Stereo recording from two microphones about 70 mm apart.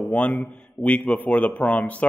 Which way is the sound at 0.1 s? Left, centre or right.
Centre.